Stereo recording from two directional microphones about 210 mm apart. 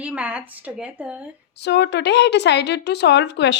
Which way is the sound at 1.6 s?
55° left (ahead or behind).